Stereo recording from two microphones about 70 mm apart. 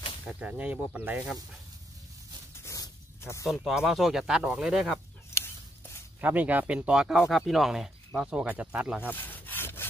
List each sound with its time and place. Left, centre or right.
0.4 s speech: centre
2.5 s a sound: left
3.4 s speech: centre
6.2 s speech: right
9.1 s wood: left